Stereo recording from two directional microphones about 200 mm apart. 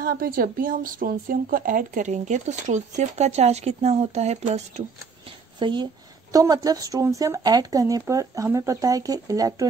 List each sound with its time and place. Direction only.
0.0 s speech: 45° right (ahead or behind)
5.6 s speech: 25° right (ahead or behind)